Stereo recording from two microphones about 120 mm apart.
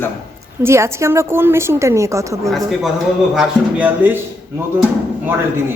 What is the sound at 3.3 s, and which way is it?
Speech, 15° right (ahead or behind).